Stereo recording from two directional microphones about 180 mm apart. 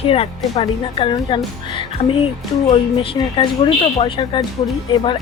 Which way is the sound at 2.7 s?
30° left (ahead or behind).